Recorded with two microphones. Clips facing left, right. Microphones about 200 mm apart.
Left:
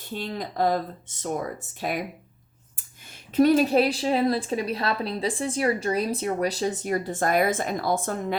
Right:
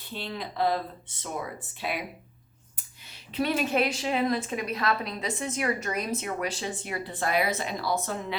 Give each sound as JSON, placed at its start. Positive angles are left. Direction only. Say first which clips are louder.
{"t": 0.1, "sound": "speech", "louder": "left 4 dB", "side_deg": 45}
{"t": 3.3, "sound": "a woman's voice", "louder": "left 8 dB", "side_deg": 40}